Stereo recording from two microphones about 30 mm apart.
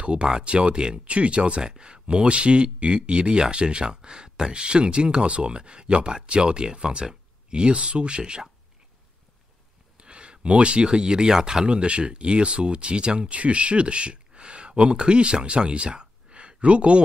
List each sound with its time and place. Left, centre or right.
0.0 s speech: right
1.0 s speech: right
1.6 s speech: right
9.9 s speech: right
11.6 s speech: right